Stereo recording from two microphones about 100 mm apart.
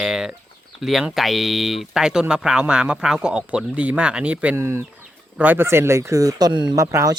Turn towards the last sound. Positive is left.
turn(degrees=-35)  # may be behind; listen again after turning